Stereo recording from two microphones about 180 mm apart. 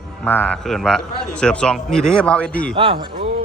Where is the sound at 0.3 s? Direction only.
10° left (ahead or behind).